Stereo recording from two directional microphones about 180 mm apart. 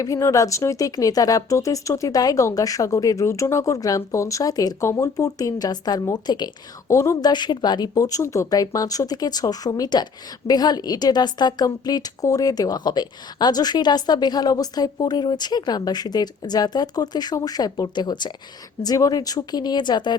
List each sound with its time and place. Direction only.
0.0 s a woman's voice: 20° left (ahead or behind)